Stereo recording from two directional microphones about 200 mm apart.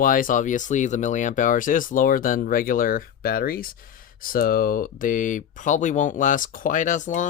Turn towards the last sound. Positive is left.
turn(degrees=40)  # may be behind; listen again after turning